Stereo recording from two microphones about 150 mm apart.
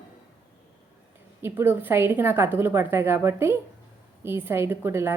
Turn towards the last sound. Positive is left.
turn(degrees=-15)  # may be behind; listen again after turning